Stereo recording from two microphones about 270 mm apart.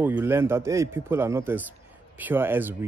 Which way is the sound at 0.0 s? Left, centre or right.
Centre.